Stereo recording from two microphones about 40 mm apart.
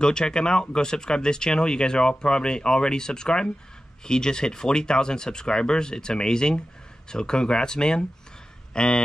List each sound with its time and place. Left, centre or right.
0.0 s speech: centre